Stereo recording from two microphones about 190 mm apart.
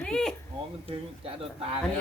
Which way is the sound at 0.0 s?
5° left (ahead or behind).